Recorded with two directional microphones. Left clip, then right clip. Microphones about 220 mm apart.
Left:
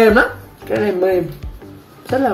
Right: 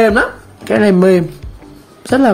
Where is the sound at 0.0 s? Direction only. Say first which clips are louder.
Even; 50° right (ahead or behind).